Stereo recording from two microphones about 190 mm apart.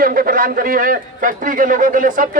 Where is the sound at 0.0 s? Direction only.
50° right (ahead or behind).